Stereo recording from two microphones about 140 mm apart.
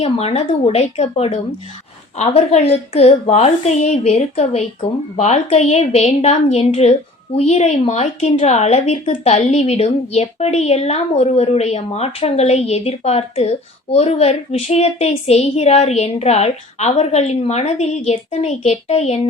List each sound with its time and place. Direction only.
0.0 s a woman's voice: 45° left (ahead or behind)